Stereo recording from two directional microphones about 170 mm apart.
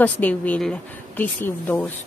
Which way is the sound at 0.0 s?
10° left (ahead or behind).